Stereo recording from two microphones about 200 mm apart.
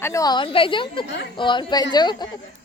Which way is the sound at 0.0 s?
15° left (ahead or behind).